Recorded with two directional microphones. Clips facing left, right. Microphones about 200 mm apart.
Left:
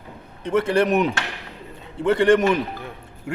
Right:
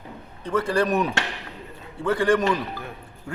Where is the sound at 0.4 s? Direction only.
25° left (ahead or behind).